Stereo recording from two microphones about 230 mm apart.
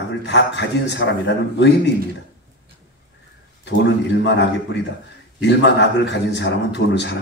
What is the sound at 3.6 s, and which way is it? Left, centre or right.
A man's voice, left.